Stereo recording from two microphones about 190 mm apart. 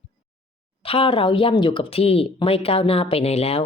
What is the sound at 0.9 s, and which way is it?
Speech, 30° left (ahead or behind).